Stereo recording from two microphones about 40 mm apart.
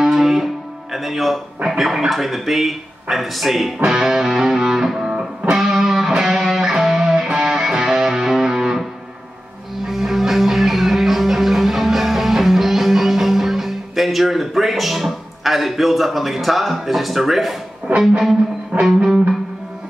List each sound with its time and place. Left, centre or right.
0.0 s music: centre
1.7 s a man's voice: centre
3.8 s music: right
4.1 s music: centre
9.8 s music: centre
17.9 s music: right
18.9 s music: centre